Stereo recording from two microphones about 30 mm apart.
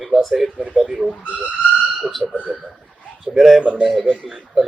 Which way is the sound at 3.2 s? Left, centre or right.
Centre.